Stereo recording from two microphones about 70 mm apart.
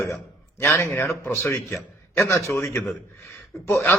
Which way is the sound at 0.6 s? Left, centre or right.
Left.